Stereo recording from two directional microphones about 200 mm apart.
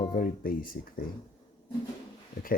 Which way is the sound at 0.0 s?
40° left (ahead or behind).